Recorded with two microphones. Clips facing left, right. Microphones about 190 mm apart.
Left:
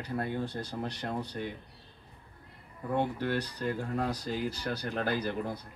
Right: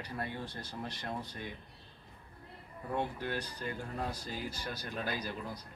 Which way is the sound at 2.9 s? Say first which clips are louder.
Left 6 dB; 70° left (ahead or behind).